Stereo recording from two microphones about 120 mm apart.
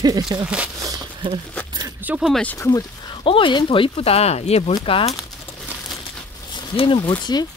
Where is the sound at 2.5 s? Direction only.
25° left (ahead or behind).